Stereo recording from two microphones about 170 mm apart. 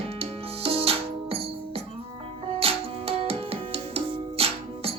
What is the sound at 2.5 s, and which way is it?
Music, 35° right (ahead or behind).